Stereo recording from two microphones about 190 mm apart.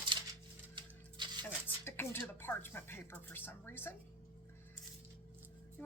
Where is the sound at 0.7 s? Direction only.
25° right (ahead or behind).